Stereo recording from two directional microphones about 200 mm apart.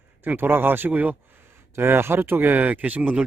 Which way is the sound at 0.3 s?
10° right (ahead or behind).